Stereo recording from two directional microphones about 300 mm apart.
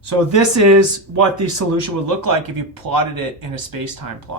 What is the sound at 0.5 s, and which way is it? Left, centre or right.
Speech, right.